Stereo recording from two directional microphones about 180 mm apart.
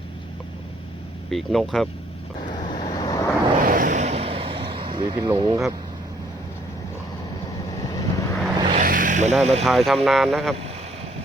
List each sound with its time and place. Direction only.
1.3 s speech: centre (ahead or behind)
2.6 s vehicle: 25° left (ahead or behind)
3.7 s vehicle: 50° right (ahead or behind); by 5.5 s 25° right (ahead or behind)
7.7 s vehicle: 20° left (ahead or behind)
8.7 s vehicle: 50° right (ahead or behind)
9.4 s speech: 35° right (ahead or behind)
9.6 s speech: centre (ahead or behind)